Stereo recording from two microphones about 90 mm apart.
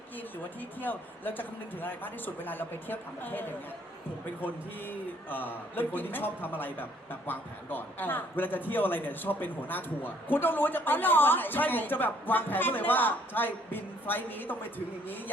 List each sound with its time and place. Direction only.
0.8 s a man's voice: 20° left (ahead or behind)